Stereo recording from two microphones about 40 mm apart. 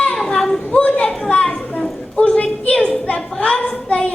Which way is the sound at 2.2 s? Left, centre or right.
Left.